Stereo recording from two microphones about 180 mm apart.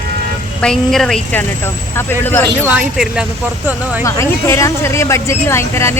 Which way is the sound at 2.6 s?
5° right (ahead or behind).